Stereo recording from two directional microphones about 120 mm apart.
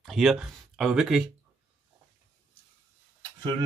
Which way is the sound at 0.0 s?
Centre (ahead or behind).